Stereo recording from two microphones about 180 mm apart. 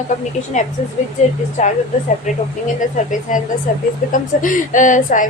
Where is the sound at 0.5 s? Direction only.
45° left (ahead or behind).